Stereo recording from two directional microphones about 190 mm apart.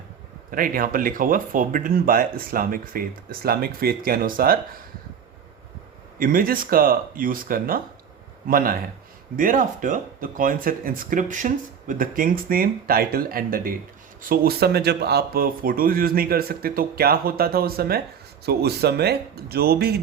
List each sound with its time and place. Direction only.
0.5 s speech: 45° right (ahead or behind)
6.1 s speech: 45° right (ahead or behind)